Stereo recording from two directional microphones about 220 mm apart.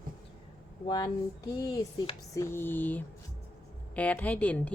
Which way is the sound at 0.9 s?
15° left (ahead or behind).